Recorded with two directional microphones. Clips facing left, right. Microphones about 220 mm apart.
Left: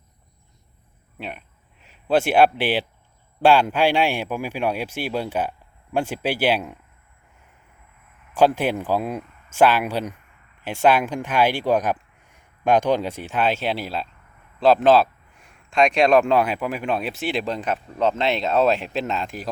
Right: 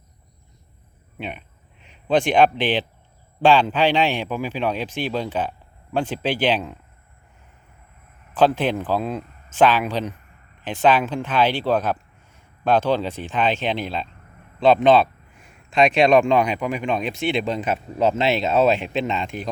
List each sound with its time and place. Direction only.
1.2 s speech: centre (ahead or behind)
8.3 s speech: 10° left (ahead or behind)